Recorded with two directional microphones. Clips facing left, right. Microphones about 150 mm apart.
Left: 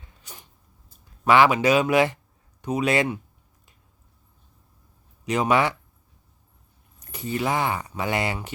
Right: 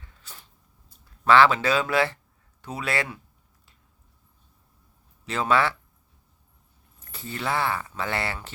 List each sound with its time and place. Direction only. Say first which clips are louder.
0.0 s a sound: left 2 dB; 15° left (ahead or behind)
1.2 s speech: left 1 dB; 15° left (ahead or behind)
5.2 s speech: left 2 dB; 15° left (ahead or behind)
7.0 s speech: left 5 dB; 15° left (ahead or behind)